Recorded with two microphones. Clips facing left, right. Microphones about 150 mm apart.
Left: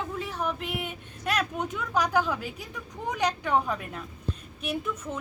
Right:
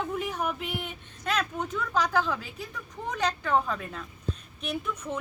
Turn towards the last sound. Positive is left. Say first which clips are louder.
# left 1 dB
turn(degrees=0)  # may be behind; listen again after turning